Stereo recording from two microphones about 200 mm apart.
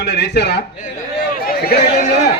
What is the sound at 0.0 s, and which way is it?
Speech, 55° left (ahead or behind).